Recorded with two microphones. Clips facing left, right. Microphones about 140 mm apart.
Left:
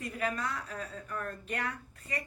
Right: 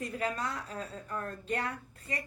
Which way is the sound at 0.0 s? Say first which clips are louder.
Even; 30° right (ahead or behind).